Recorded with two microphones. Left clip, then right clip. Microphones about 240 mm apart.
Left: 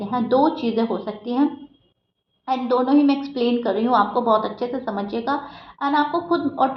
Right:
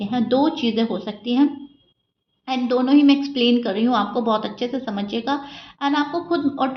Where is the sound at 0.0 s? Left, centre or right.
Right.